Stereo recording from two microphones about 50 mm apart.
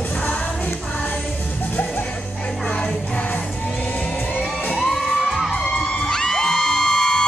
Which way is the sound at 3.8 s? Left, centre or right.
Left.